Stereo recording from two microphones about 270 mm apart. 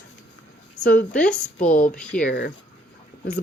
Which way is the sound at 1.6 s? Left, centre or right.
Left.